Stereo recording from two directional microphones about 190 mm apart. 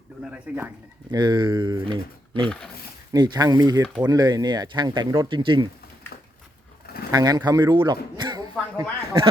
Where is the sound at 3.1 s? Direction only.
20° right (ahead or behind).